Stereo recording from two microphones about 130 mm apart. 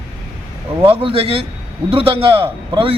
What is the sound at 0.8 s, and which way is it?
A man's voice, 45° right (ahead or behind).